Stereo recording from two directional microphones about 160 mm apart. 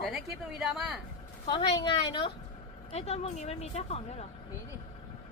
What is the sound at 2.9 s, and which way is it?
Speech, 40° left (ahead or behind).